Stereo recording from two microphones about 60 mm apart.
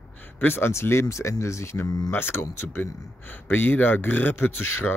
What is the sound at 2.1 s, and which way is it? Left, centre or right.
Speech, left.